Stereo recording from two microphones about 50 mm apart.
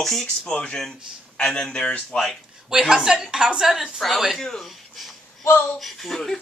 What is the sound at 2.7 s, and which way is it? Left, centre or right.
Speech, centre.